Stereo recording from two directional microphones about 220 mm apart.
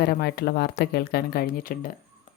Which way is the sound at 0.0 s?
45° left (ahead or behind).